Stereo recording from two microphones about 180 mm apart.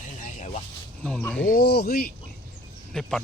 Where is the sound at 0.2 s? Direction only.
40° left (ahead or behind).